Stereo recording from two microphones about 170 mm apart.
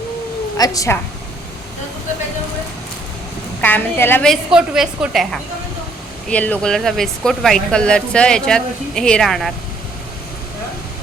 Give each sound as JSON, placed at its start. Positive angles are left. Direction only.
{"t": 0.5, "sound": "a woman's voice", "side_deg": 20}
{"t": 3.6, "sound": "a woman's voice", "side_deg": 10}
{"t": 4.3, "sound": "speech", "side_deg": -5}